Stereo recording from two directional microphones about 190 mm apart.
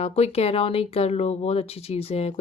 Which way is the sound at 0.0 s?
35° left (ahead or behind).